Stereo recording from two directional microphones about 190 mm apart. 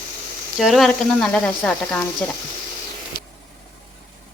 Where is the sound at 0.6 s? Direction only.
Centre (ahead or behind).